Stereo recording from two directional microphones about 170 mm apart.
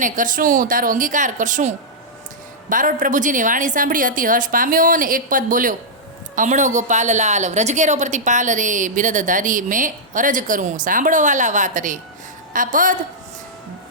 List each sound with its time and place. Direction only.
0.0 s a woman's voice: 50° right (ahead or behind)